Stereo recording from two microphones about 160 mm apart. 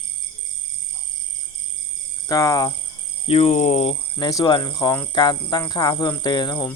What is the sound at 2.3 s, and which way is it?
Speech, 20° left (ahead or behind).